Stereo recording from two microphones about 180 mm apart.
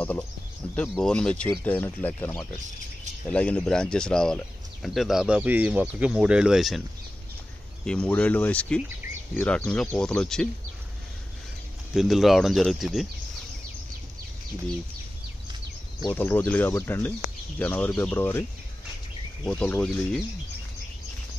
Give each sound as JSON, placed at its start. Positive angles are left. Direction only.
{"t": 0.7, "sound": "speech", "side_deg": 5}
{"t": 7.8, "sound": "speech", "side_deg": 5}
{"t": 11.9, "sound": "speech", "side_deg": 0}
{"t": 16.1, "sound": "speech", "side_deg": 10}
{"t": 19.4, "sound": "speech", "side_deg": 5}